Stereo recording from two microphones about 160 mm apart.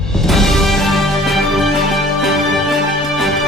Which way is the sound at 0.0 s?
5° left (ahead or behind).